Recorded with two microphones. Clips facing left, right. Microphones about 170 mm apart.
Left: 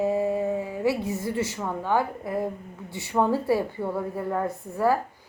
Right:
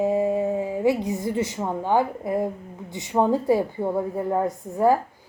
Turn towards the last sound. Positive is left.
turn(degrees=-20)  # may be behind; listen again after turning